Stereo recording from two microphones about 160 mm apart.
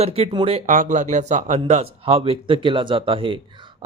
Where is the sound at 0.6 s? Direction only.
55° right (ahead or behind).